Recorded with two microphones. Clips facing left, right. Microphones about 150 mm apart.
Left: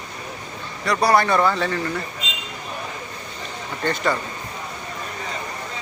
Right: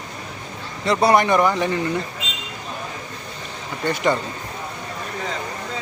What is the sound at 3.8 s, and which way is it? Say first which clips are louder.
Speech: right 2 dB; 15° right (ahead or behind).